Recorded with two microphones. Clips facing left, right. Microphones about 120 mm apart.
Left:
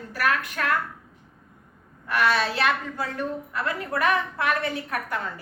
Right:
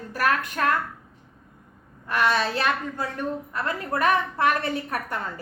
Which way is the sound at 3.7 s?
40° right (ahead or behind).